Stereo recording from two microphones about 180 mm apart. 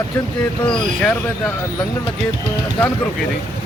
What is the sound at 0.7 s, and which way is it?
Speech, 5° left (ahead or behind).